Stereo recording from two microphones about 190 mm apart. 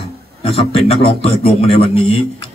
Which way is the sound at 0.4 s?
30° left (ahead or behind).